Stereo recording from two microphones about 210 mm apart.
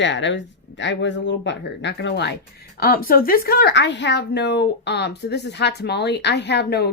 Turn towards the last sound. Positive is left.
turn(degrees=50)  # may be behind; listen again after turning